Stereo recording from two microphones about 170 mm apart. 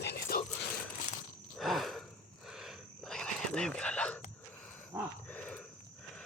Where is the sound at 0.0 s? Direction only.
70° left (ahead or behind).